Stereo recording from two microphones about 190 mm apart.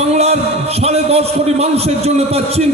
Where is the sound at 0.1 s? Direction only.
35° right (ahead or behind).